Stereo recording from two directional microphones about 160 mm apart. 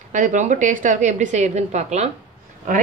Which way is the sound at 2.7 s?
60° right (ahead or behind).